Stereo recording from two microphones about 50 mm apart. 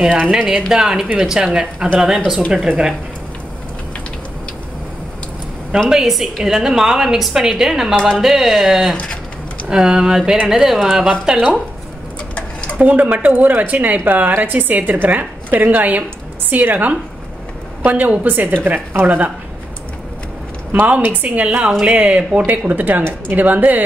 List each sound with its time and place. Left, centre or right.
0.3 s speech: right
0.6 s a woman's voice: centre
5.9 s a woman's voice: centre
7.9 s speech: centre
8.2 s speech: centre
8.9 s a sound: left
9.7 s a woman's voice: centre
12.7 s a woman's voice: right
20.8 s a woman's voice: right
21.5 s a woman's voice: centre
21.8 s a woman's voice: right